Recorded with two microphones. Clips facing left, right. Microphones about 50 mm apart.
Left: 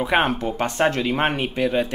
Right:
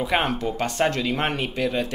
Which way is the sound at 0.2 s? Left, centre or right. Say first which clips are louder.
Left 3 dB; left.